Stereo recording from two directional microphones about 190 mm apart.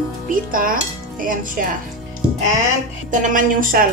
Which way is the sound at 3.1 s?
45° right (ahead or behind).